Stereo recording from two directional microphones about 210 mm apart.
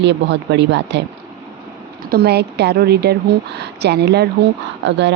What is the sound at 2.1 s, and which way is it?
A woman's voice, 50° right (ahead or behind).